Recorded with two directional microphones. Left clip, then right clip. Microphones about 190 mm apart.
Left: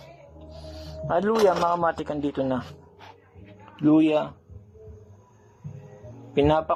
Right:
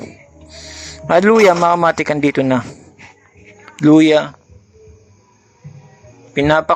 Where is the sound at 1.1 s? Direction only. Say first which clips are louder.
Right 12 dB; 45° right (ahead or behind).